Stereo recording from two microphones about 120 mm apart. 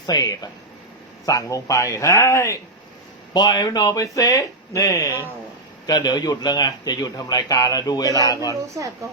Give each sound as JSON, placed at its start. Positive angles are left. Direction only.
{"t": 0.0, "sound": "a man's voice", "side_deg": 35}
{"t": 3.3, "sound": "a man's voice", "side_deg": 35}